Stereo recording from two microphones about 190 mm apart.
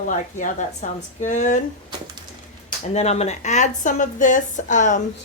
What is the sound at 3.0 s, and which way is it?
A woman's voice, 35° left (ahead or behind).